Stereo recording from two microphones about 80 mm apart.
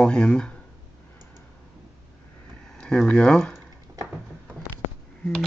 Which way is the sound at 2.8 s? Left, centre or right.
Centre.